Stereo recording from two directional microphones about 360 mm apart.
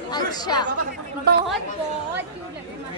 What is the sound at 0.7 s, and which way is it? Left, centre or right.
Speech, right.